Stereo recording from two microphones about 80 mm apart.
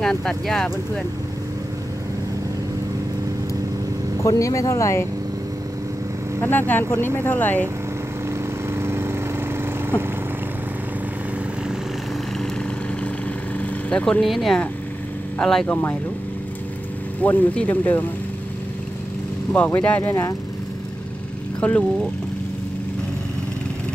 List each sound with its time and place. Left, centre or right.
0.0 s speech: centre
4.2 s speech: left
6.7 s speech: left
8.6 s lawn mower: right
13.6 s vehicle: centre
14.2 s speech: centre
17.2 s speech: left
19.5 s speech: centre
20.0 s speech: left
21.5 s speech: centre